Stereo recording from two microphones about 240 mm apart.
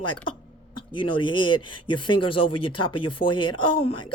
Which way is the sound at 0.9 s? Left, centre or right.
Left.